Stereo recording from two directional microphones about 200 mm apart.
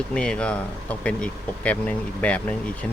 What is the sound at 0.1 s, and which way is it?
Speech, 5° left (ahead or behind).